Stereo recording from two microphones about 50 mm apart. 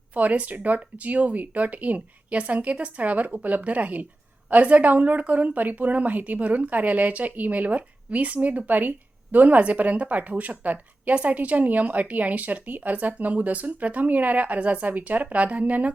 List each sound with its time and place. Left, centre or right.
0.1 s a woman's voice: right